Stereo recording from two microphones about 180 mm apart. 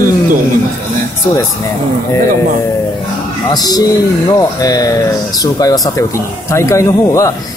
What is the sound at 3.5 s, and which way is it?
A man's voice, 20° left (ahead or behind).